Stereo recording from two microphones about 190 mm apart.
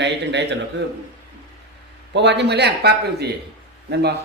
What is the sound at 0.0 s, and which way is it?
Speech, 65° right (ahead or behind).